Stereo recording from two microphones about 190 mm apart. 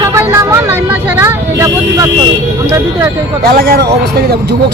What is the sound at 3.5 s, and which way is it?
Speech, 50° right (ahead or behind).